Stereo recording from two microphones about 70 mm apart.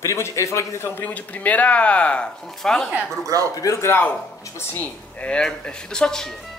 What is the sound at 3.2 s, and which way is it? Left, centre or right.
Speech, right.